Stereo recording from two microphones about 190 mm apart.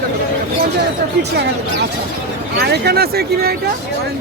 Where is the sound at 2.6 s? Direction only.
55° right (ahead or behind).